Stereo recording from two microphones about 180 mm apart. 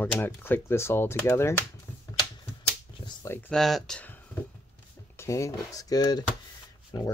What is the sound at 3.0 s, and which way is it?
Speech, 15° left (ahead or behind).